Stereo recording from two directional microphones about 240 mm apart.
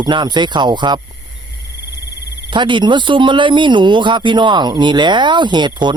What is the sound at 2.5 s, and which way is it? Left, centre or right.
Speech, centre.